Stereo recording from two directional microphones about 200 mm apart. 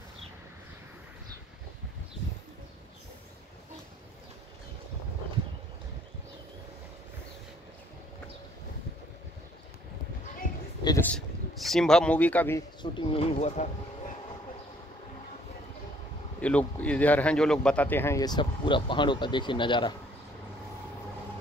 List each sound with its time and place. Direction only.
11.0 s speech: 5° left (ahead or behind)
12.9 s speech: 30° left (ahead or behind)
16.3 s a man's voice: 5° left (ahead or behind); by 19.9 s 25° left (ahead or behind)